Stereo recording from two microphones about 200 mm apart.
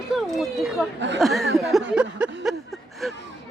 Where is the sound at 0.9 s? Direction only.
65° right (ahead or behind).